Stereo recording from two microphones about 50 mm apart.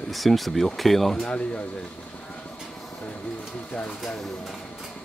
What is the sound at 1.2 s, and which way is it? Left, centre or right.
Speech, left.